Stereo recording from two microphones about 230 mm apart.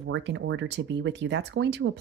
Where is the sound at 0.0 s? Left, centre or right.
Right.